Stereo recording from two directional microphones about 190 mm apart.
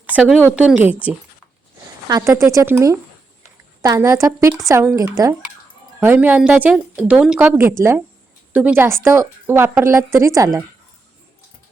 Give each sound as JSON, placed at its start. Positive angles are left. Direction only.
{"t": 0.0, "sound": "speech", "side_deg": -5}